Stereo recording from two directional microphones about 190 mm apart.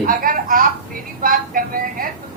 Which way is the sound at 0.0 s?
45° right (ahead or behind).